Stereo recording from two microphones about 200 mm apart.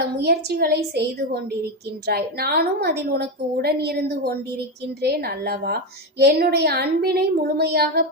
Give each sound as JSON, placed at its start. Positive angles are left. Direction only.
{"t": 0.0, "sound": "a woman's voice", "side_deg": -55}